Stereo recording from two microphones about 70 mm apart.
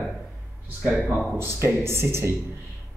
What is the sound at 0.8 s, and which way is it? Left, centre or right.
Speech, centre.